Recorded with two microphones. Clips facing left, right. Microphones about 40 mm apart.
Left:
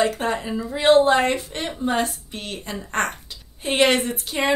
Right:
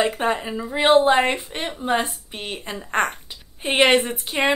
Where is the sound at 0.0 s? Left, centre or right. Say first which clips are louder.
Right 1 dB; centre.